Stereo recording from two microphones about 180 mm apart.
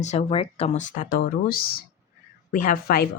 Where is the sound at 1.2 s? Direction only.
55° left (ahead or behind).